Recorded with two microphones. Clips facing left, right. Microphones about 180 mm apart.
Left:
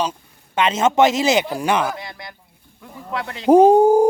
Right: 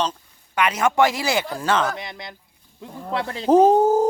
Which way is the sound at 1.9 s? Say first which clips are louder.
Even; 20° right (ahead or behind).